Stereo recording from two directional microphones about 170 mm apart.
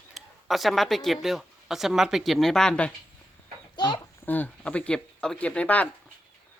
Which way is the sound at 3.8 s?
25° left (ahead or behind).